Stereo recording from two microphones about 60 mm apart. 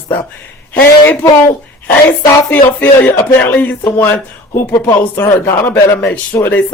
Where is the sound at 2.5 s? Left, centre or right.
Left.